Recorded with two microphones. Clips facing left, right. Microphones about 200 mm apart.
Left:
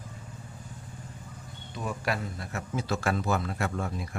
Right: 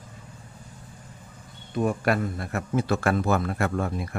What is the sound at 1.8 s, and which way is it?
A man's voice, 55° right (ahead or behind).